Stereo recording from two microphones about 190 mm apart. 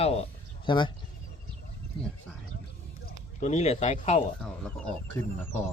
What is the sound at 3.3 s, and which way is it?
Speech, 35° left (ahead or behind).